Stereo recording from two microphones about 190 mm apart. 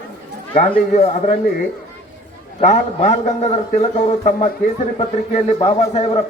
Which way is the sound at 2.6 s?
40° left (ahead or behind).